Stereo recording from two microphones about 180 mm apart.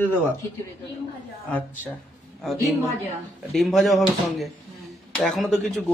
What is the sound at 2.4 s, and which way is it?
Speech, centre (ahead or behind).